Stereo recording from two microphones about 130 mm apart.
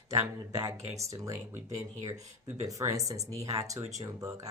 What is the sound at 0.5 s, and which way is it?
Speech, 25° right (ahead or behind).